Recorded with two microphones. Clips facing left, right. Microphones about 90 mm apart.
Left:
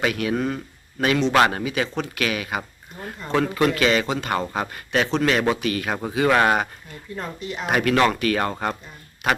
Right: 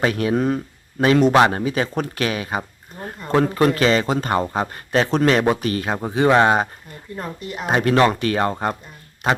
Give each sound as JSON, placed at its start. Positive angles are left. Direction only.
{"t": 0.0, "sound": "speech", "side_deg": -35}
{"t": 1.3, "sound": "speech", "side_deg": -20}
{"t": 1.5, "sound": "speech", "side_deg": -35}
{"t": 7.7, "sound": "speech", "side_deg": -30}